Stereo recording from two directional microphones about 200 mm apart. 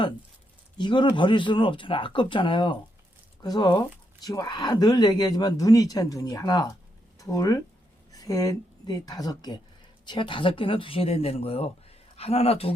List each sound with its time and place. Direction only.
0.8 s speech: 25° left (ahead or behind)